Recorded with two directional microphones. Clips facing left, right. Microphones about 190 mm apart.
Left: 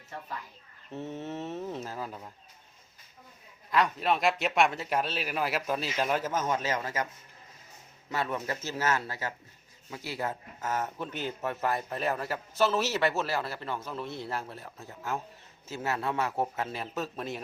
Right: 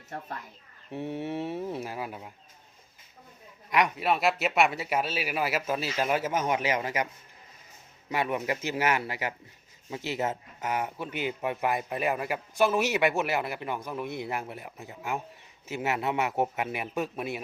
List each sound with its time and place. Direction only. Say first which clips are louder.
0.9 s speech: right 4 dB; 15° right (ahead or behind)
3.7 s speech: right 1 dB; 15° right (ahead or behind)
8.1 s speech: right 3 dB; 15° right (ahead or behind)